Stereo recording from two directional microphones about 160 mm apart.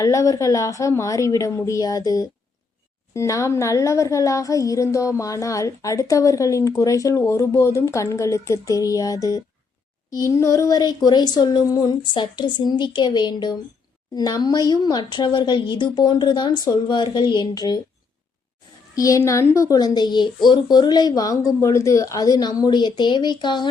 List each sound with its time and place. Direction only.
0.0 s a woman's voice: 20° left (ahead or behind)
18.9 s a woman's voice: 20° left (ahead or behind)